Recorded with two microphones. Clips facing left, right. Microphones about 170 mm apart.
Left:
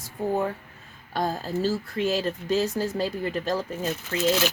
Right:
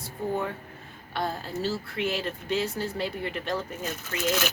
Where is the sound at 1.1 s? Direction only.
40° left (ahead or behind).